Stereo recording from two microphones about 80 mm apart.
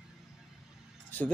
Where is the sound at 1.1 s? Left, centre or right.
Left.